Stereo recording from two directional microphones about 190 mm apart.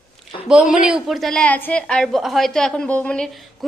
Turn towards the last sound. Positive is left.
turn(degrees=5)  # may be behind; listen again after turning